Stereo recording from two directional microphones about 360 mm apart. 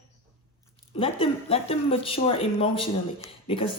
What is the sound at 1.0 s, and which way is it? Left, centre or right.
Speech, centre.